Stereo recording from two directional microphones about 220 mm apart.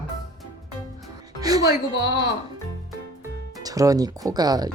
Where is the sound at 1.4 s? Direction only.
15° right (ahead or behind).